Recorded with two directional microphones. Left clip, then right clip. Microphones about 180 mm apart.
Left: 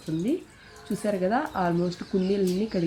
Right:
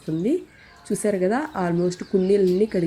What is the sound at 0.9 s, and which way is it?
Speech, 25° right (ahead or behind).